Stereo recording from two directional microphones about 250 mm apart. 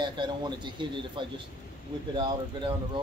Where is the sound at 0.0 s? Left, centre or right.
Centre.